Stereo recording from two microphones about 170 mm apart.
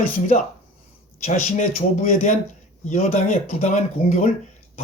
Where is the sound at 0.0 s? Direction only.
50° left (ahead or behind).